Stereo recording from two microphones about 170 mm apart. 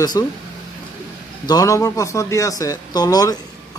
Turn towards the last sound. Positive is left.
turn(degrees=20)  # may be behind; listen again after turning